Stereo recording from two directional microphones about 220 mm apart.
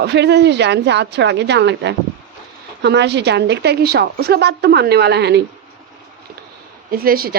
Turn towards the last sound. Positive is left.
turn(degrees=-40)  # may be behind; listen again after turning